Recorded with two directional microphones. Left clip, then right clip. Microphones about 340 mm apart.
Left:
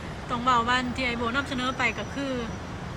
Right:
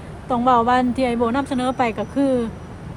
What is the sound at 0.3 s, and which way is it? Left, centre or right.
Speech, centre.